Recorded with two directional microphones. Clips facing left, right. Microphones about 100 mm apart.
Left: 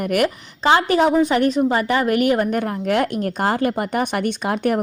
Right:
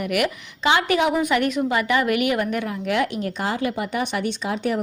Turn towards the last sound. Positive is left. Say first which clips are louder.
# left 4 dB
turn(degrees=55)  # may be behind; listen again after turning